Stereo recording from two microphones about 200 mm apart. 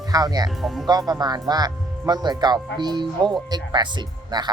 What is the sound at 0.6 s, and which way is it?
Speech, centre (ahead or behind).